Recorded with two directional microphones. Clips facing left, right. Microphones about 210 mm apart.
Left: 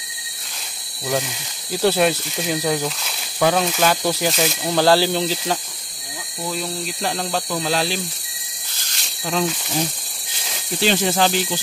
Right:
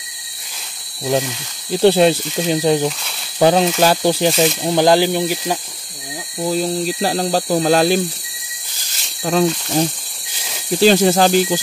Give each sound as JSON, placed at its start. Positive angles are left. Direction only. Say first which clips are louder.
{"t": 1.7, "sound": "speech", "louder": "right 6 dB", "side_deg": -30}
{"t": 4.4, "sound": "speech", "louder": "right 5 dB", "side_deg": -20}
{"t": 6.4, "sound": "speech", "louder": "right 8 dB", "side_deg": -35}
{"t": 9.2, "sound": "speech", "louder": "right 6 dB", "side_deg": -45}
{"t": 10.8, "sound": "speech", "louder": "right 7 dB", "side_deg": -40}